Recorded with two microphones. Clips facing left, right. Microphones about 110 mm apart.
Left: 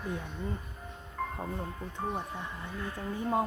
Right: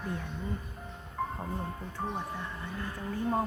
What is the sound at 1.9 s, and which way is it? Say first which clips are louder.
Music: left 1 dB; 15° left (ahead or behind).